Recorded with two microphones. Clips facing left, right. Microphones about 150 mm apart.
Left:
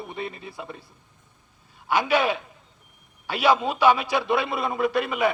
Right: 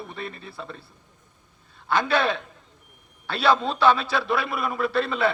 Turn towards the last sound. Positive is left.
turn(degrees=15)  # may be behind; listen again after turning